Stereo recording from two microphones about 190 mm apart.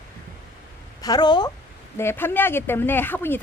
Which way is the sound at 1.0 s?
20° left (ahead or behind).